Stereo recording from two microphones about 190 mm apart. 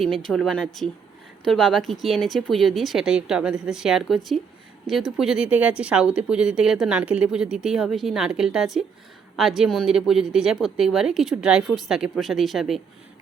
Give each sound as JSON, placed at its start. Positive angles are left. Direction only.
{"t": 0.1, "sound": "speech", "side_deg": 5}